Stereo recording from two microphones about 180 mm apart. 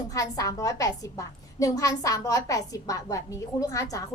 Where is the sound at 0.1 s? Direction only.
20° left (ahead or behind).